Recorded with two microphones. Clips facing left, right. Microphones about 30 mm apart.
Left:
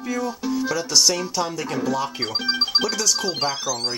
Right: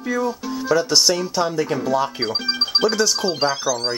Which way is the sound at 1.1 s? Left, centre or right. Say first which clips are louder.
Right 3 dB; centre.